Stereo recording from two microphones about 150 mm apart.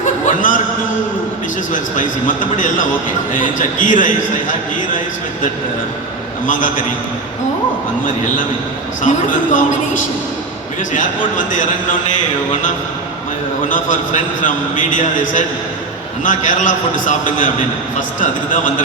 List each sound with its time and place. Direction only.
0.3 s a sound: 60° left (ahead or behind)
1.7 s a man's voice: 60° left (ahead or behind)
6.5 s a man's voice: 60° left (ahead or behind)
9.0 s a man's voice: 60° left (ahead or behind)
13.7 s a man's voice: 60° left (ahead or behind)